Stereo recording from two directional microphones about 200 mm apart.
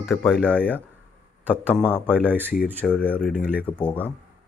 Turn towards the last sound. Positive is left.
turn(degrees=5)  # may be behind; listen again after turning